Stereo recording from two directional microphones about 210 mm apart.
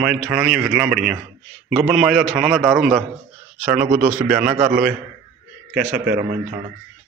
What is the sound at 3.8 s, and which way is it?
Speech, 40° right (ahead or behind).